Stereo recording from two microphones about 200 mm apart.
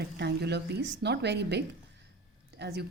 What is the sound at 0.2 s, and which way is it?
A woman's voice, 55° right (ahead or behind).